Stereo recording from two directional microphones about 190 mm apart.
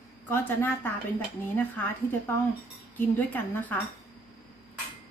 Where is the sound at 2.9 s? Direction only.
10° left (ahead or behind).